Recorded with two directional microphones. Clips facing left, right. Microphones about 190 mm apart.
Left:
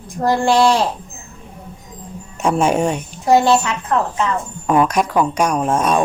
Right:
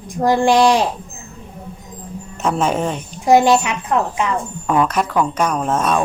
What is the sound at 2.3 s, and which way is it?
Speech, 10° left (ahead or behind).